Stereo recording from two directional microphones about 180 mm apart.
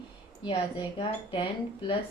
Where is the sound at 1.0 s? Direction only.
30° left (ahead or behind).